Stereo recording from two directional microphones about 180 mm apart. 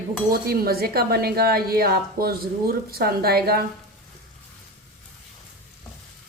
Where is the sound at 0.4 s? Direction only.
60° right (ahead or behind).